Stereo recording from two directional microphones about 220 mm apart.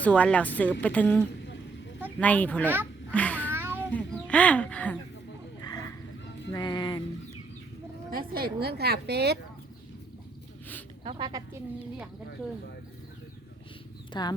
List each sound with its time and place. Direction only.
0.0 s a woman's voice: 5° left (ahead or behind)
3.4 s cat: 10° right (ahead or behind)
3.9 s speech: 5° left (ahead or behind)
6.5 s music: 20° left (ahead or behind)
8.1 s a sound: 40° right (ahead or behind)
8.6 s speech: 45° right (ahead or behind)
11.0 s speech: 20° right (ahead or behind)
14.1 s speech: 20° left (ahead or behind)